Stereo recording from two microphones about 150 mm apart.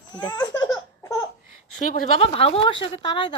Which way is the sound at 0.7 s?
20° left (ahead or behind).